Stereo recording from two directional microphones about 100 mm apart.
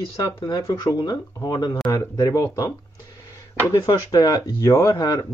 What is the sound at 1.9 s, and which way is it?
Speech, 30° left (ahead or behind).